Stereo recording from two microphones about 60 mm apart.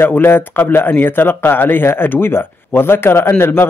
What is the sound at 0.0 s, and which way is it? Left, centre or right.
Speech, left.